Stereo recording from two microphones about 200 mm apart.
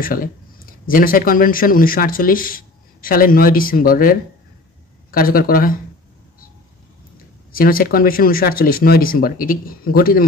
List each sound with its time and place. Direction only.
0.0 s speech: 45° left (ahead or behind)
7.5 s speech: 45° left (ahead or behind)